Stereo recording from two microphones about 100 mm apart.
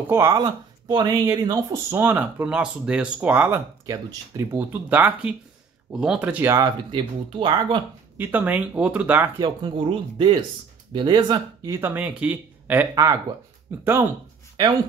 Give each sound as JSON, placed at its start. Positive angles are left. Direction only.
{"t": 0.1, "sound": "speech", "side_deg": -30}
{"t": 0.4, "sound": "speech", "side_deg": -45}
{"t": 1.9, "sound": "speech", "side_deg": -25}
{"t": 3.8, "sound": "speech", "side_deg": -35}
{"t": 6.6, "sound": "speech", "side_deg": -55}
{"t": 8.2, "sound": "speech", "side_deg": -15}
{"t": 9.4, "sound": "speech", "side_deg": -55}
{"t": 11.8, "sound": "speech", "side_deg": -20}
{"t": 12.9, "sound": "speech", "side_deg": -35}
{"t": 13.8, "sound": "speech", "side_deg": -25}